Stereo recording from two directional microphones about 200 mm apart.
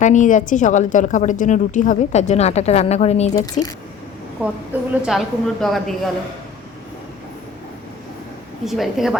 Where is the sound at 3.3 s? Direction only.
20° left (ahead or behind).